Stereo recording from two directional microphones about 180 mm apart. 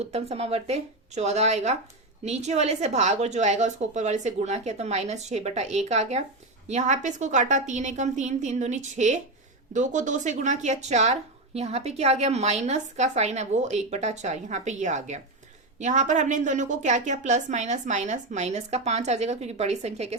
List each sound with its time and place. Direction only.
0.0 s a woman's voice: 35° right (ahead or behind)